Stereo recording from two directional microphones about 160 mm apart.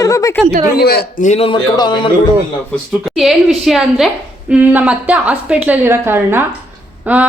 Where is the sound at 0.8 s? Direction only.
85° left.